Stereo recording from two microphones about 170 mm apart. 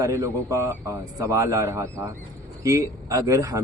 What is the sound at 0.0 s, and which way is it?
A man's voice, 15° right (ahead or behind).